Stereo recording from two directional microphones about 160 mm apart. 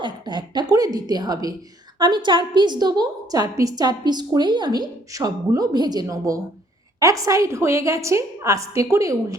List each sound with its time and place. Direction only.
0.0 s a woman's voice: 30° right (ahead or behind)